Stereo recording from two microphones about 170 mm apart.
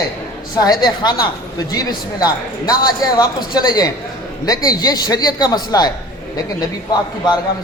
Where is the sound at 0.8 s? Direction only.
25° left (ahead or behind).